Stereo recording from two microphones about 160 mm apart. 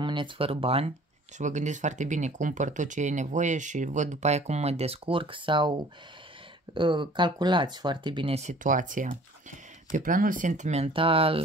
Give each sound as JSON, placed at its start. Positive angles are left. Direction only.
{"t": 0.0, "sound": "speech", "side_deg": -30}
{"t": 1.4, "sound": "speech", "side_deg": -50}